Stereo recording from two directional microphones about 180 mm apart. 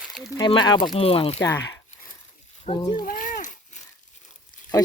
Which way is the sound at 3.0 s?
50° left (ahead or behind).